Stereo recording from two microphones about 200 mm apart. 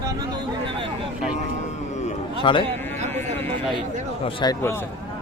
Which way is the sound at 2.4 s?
25° left (ahead or behind).